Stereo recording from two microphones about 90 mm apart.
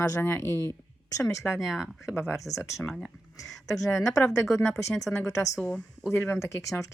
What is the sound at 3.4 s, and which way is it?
Speech, 40° left (ahead or behind).